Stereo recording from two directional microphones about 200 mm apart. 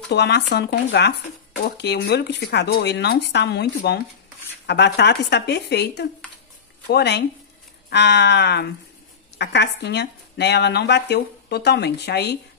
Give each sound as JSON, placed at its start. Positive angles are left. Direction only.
{"t": 0.1, "sound": "speech", "side_deg": 55}